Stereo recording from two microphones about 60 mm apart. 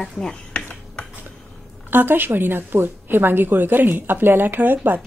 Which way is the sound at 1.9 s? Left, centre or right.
Right.